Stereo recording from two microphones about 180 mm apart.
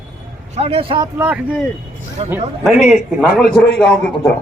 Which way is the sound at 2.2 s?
30° right (ahead or behind).